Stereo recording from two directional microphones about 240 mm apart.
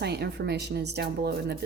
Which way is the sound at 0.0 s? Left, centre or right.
Right.